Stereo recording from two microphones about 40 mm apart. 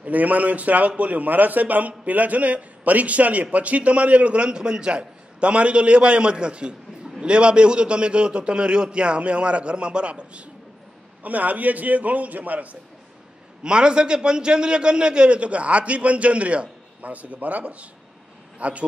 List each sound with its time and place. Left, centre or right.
0.0 s a man's voice: right
11.2 s a man's voice: right
13.6 s a man's voice: right